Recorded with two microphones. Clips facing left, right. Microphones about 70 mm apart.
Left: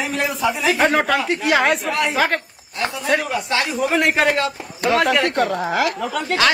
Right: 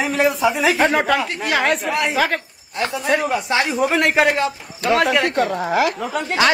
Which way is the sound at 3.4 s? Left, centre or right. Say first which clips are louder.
Right 2 dB; right.